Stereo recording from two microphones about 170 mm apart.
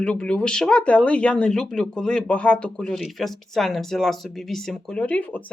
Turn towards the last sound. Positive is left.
turn(degrees=10)  # may be behind; listen again after turning